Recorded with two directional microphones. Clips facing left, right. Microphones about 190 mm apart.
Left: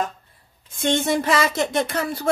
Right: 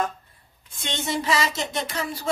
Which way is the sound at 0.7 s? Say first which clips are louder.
Left 8 dB; 50° left (ahead or behind).